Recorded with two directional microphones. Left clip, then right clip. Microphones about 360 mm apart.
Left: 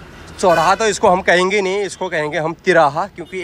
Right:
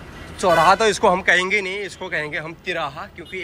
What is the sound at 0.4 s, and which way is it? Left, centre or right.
Speech, centre.